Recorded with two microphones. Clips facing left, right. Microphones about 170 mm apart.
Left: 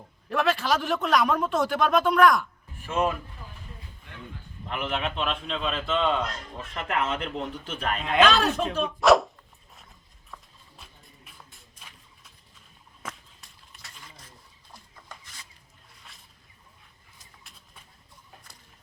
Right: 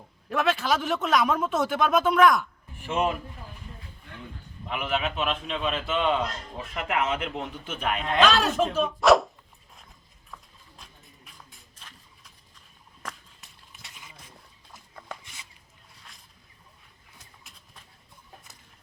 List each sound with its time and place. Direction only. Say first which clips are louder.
0.3 s a man's voice: even; centre (ahead or behind)
2.8 s speech: even; 15° right (ahead or behind)
4.7 s a man's voice: right 1 dB; 5° right (ahead or behind)
11.3 s walk: even; 5° left (ahead or behind)